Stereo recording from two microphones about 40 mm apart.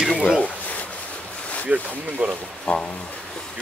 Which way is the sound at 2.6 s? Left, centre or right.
Left.